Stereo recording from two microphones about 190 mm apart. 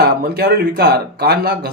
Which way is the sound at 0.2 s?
55° right (ahead or behind).